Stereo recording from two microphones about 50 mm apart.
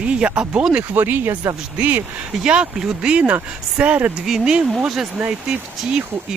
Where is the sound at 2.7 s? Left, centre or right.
Centre.